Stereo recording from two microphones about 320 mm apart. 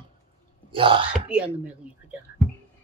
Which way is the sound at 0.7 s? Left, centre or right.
Centre.